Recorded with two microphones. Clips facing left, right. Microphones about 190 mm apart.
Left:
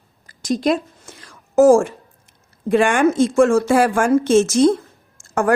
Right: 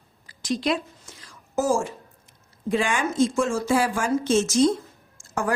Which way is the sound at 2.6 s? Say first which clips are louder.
Left 9 dB; 60° left (ahead or behind).